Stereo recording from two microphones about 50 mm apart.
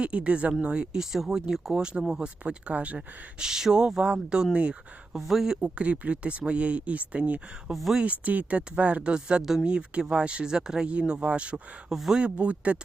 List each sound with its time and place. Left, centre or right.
0.0 s speech: right
3.4 s speech: centre
5.1 s speech: centre
5.5 s speech: right
7.7 s speech: centre
8.0 s speech: right; by 9.6 s centre
9.6 s speech: right
11.9 s speech: centre
12.2 s speech: right